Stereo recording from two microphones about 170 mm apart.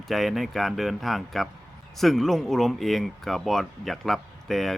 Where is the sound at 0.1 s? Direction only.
Centre (ahead or behind).